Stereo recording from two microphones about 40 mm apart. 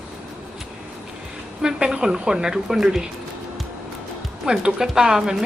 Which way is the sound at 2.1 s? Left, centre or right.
Right.